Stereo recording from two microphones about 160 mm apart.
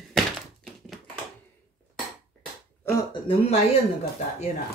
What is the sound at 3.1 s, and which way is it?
Speech, 35° left (ahead or behind).